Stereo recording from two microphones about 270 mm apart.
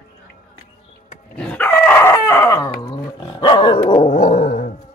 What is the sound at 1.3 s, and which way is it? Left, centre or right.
Dog, centre.